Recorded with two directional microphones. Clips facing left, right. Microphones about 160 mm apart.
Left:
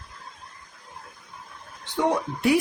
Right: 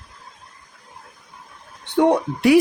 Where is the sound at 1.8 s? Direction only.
60° right (ahead or behind).